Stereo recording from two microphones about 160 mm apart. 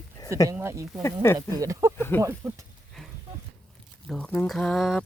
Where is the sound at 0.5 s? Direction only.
20° right (ahead or behind).